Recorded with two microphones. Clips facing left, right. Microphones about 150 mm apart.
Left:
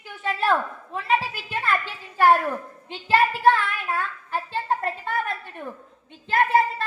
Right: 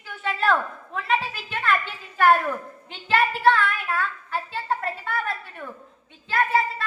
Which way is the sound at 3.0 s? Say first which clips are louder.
Left 1 dB; 10° left (ahead or behind).